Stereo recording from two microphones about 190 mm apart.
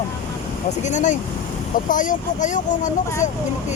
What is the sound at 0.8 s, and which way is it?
Speech, 40° left (ahead or behind).